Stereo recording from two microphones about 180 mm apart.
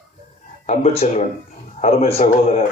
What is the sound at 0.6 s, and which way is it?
A man's voice, 35° left (ahead or behind).